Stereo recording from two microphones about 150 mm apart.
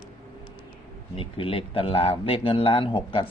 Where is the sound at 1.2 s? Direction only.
35° left (ahead or behind).